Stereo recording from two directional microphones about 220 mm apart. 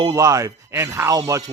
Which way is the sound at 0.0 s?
15° right (ahead or behind).